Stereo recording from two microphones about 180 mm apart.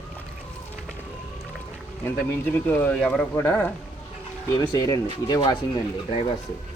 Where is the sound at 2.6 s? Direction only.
10° left (ahead or behind).